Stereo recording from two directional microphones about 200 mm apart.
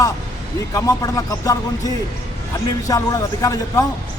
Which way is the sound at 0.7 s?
15° left (ahead or behind).